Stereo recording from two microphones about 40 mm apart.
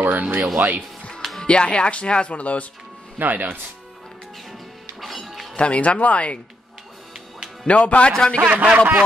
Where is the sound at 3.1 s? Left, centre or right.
Right.